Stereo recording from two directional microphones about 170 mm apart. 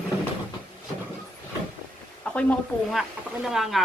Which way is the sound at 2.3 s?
5° left (ahead or behind).